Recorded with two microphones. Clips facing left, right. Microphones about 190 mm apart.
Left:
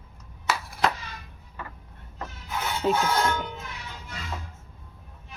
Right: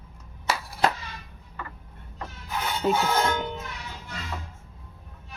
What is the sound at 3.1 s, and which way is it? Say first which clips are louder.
Speech: right 1 dB; 15° right (ahead or behind).